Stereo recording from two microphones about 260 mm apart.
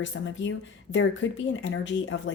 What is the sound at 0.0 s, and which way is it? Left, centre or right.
Speech, left.